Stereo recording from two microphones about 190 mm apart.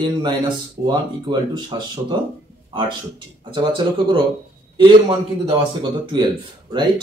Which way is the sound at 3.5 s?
25° right (ahead or behind).